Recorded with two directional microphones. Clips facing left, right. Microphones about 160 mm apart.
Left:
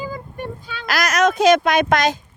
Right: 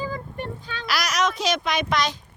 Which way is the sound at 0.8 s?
50° left (ahead or behind).